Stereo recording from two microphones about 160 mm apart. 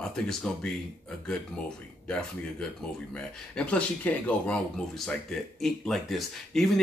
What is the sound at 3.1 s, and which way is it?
Speech, 5° left (ahead or behind).